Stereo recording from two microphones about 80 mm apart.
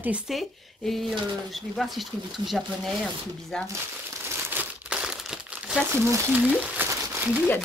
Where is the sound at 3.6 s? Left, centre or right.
Right.